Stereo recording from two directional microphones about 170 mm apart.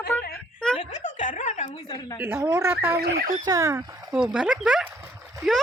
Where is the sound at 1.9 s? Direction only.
25° left (ahead or behind).